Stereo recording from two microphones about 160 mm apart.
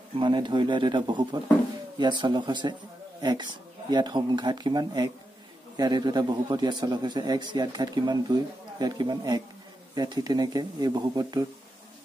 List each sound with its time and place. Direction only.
0.2 s a man's voice: 30° right (ahead or behind)